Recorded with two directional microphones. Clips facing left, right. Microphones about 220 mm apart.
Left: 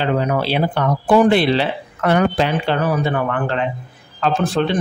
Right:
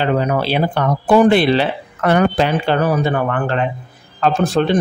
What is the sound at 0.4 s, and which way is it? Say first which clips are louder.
Speech: right 1 dB; 45° right (ahead or behind).